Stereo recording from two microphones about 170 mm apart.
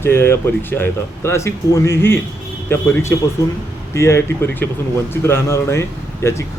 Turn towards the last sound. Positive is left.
turn(degrees=15)  # may be behind; listen again after turning